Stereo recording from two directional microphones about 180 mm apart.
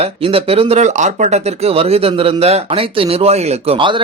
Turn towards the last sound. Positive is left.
turn(degrees=-30)  # may be behind; listen again after turning